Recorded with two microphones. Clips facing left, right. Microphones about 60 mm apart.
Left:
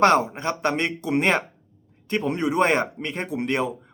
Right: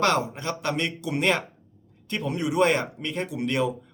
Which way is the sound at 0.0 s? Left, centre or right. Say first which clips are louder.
Left 5 dB; left.